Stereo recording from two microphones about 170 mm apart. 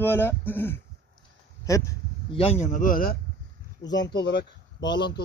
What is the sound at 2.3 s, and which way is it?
Speech, 40° left (ahead or behind).